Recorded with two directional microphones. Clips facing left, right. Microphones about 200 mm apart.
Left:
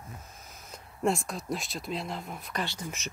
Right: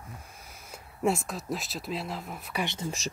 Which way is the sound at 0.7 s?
5° right (ahead or behind).